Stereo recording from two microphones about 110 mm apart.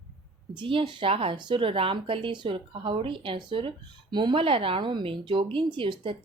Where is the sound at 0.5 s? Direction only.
50° right (ahead or behind).